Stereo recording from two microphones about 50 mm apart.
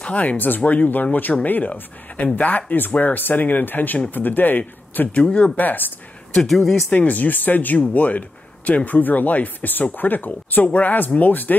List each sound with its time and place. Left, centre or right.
0.0 s speech: left
6.3 s speech: centre
6.9 s speech: left